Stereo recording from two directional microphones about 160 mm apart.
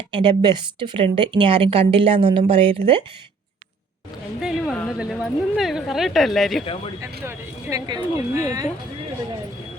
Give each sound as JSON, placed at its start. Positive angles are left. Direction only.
{"t": 0.1, "sound": "speech", "side_deg": -30}
{"t": 4.4, "sound": "speech", "side_deg": -5}
{"t": 7.3, "sound": "speech", "side_deg": -25}